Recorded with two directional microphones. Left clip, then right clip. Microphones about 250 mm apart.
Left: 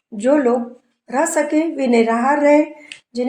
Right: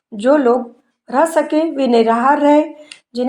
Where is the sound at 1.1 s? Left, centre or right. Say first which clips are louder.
Right 3 dB; right.